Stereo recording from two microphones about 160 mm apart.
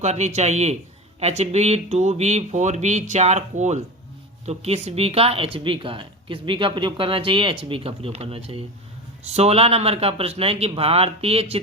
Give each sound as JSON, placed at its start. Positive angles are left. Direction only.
{"t": 0.0, "sound": "speech", "side_deg": -45}